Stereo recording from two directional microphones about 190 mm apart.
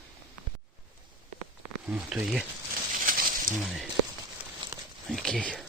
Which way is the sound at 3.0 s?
45° right (ahead or behind).